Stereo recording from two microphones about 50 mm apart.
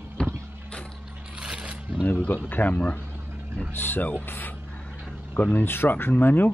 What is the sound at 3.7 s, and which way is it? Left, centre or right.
Speech, left.